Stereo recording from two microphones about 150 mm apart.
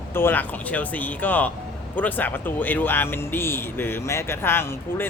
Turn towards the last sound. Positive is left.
turn(degrees=15)  # may be behind; listen again after turning